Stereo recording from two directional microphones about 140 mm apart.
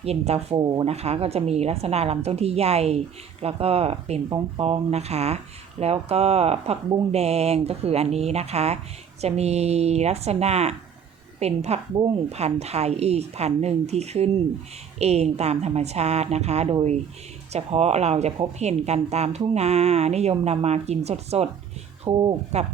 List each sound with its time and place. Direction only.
0.0 s speech: 45° right (ahead or behind)
0.5 s speech: 30° right (ahead or behind)
0.9 s a woman's voice: 50° right (ahead or behind)